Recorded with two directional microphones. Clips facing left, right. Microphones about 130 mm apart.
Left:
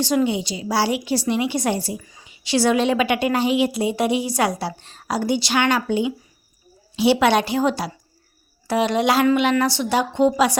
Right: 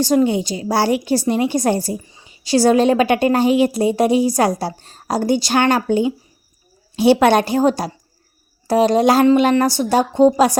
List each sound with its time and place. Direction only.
0.0 s a woman's voice: 40° right (ahead or behind)